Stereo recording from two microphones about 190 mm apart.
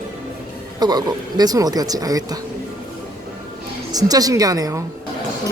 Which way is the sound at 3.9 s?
20° right (ahead or behind).